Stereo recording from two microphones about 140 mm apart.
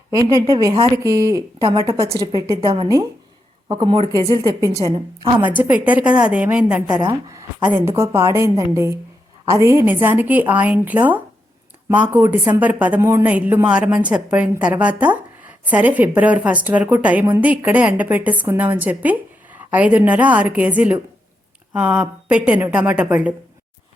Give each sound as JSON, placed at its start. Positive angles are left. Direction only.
{"t": 0.1, "sound": "a woman's voice", "side_deg": -20}
{"t": 2.6, "sound": "a woman's voice", "side_deg": -40}
{"t": 4.3, "sound": "a woman's voice", "side_deg": -25}
{"t": 5.4, "sound": "a woman's voice", "side_deg": -10}
{"t": 7.1, "sound": "a woman's voice", "side_deg": -25}